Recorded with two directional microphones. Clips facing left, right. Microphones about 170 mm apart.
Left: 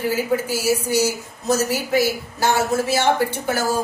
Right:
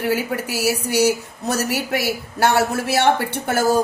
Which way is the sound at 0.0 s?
65° right (ahead or behind).